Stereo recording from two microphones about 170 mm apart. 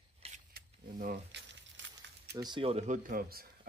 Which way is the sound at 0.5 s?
55° right (ahead or behind).